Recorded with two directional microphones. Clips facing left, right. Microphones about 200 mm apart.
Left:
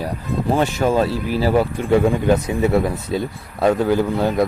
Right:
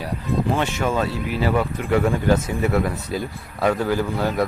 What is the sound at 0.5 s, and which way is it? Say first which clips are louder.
Speech: left 9 dB; 35° left (ahead or behind).